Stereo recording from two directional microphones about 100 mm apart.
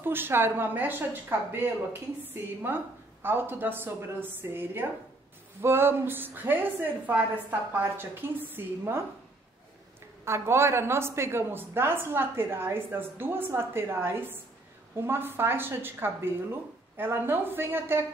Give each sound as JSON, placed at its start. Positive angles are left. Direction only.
{"t": 0.0, "sound": "speech", "side_deg": -20}
{"t": 10.2, "sound": "speech", "side_deg": -25}